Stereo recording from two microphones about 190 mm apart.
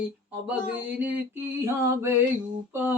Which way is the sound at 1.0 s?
10° right (ahead or behind).